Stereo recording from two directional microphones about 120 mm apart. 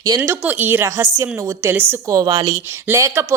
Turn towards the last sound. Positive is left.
turn(degrees=-25)  # may be behind; listen again after turning